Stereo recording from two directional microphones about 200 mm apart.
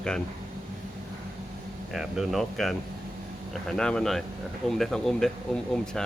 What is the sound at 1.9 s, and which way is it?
Speech, centre (ahead or behind).